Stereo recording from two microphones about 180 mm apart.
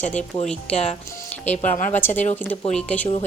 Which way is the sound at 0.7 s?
35° left (ahead or behind).